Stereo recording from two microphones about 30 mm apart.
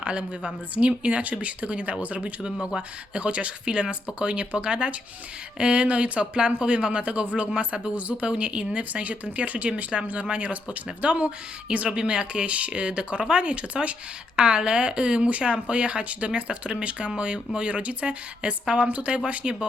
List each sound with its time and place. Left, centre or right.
0.0 s speech: right
2.4 s speech: right
8.3 s speech: right
9.9 s speech: centre
10.2 s speech: right
11.9 s speech: right
16.0 s speech: right
19.3 s speech: right